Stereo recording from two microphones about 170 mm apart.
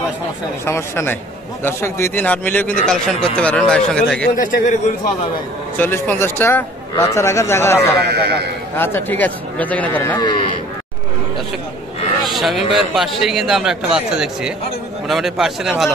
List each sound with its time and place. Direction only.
0.7 s a man's voice: 15° left (ahead or behind)
4.4 s speech: 55° left (ahead or behind)
5.8 s speech: 10° left (ahead or behind)
8.0 s a man's voice: 70° right (ahead or behind)
8.7 s speech: 15° left (ahead or behind)
10.1 s speech: 25° left (ahead or behind)
12.3 s a man's voice: centre (ahead or behind)